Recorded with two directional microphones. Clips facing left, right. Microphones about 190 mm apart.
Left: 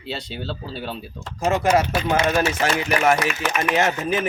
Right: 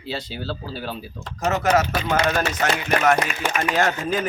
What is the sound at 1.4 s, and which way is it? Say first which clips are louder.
Speech: left 2 dB; 10° left (ahead or behind).